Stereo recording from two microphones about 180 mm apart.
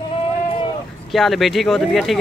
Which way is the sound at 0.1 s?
30° left (ahead or behind).